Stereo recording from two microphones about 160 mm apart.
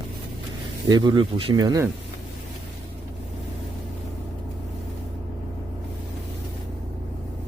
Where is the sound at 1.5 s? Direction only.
20° right (ahead or behind).